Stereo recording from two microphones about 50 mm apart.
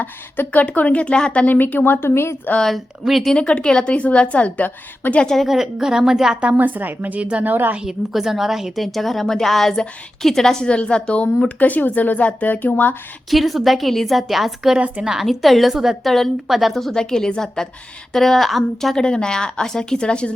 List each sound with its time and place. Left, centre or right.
0.0 s a woman's voice: left
1.5 s speech: left
3.3 s a woman's voice: left
5.2 s speech: centre
5.5 s a woman's voice: centre
6.6 s a woman's voice: right
7.8 s a woman's voice: centre
10.7 s a woman's voice: centre
11.4 s speech: left
13.3 s a woman's voice: centre
15.3 s a woman's voice: centre
16.7 s a woman's voice: centre
18.9 s speech: centre